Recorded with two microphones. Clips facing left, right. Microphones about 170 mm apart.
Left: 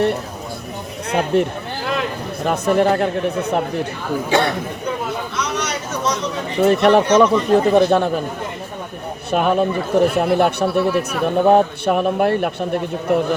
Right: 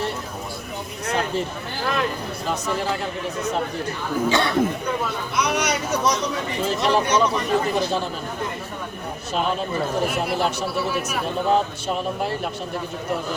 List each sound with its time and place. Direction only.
1.3 s speech: 65° left (ahead or behind)
5.4 s speech: 10° right (ahead or behind)
6.6 s speech: 60° left (ahead or behind)
9.3 s speech: 60° left (ahead or behind)